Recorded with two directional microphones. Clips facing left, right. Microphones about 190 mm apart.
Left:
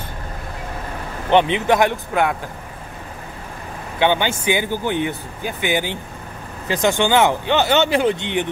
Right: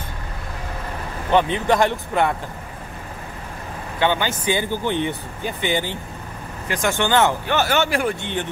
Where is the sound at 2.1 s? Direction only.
5° left (ahead or behind).